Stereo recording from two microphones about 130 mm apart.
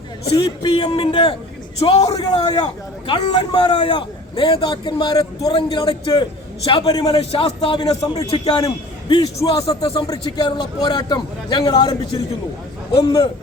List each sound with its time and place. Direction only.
0.3 s a man's voice: 30° left (ahead or behind)
0.9 s a man's voice: 45° left (ahead or behind)
2.3 s a man's voice: 35° left (ahead or behind)
7.2 s a man's voice: 50° left (ahead or behind)
8.6 s a man's voice: 30° left (ahead or behind)
13.0 s a man's voice: 35° left (ahead or behind)